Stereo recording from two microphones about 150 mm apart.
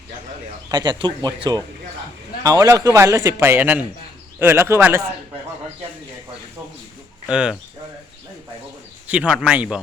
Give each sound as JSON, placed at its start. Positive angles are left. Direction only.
{"t": 0.7, "sound": "speech", "side_deg": -30}
{"t": 7.3, "sound": "speech", "side_deg": -5}
{"t": 9.0, "sound": "speech", "side_deg": -10}